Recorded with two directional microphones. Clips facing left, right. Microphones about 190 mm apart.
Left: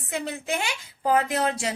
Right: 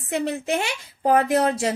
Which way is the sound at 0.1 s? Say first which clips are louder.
Right 5 dB; 35° right (ahead or behind).